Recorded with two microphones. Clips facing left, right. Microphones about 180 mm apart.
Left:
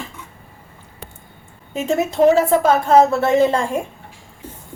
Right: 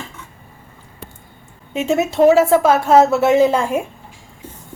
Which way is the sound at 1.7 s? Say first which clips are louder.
Right 2 dB; centre (ahead or behind).